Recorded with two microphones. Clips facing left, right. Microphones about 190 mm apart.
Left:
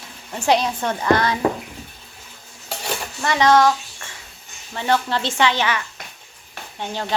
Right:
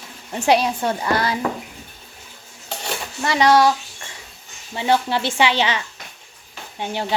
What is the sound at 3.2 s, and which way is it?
Speech, 15° right (ahead or behind).